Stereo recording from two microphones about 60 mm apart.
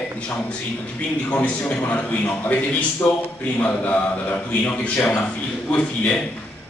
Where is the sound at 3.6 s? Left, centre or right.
Left.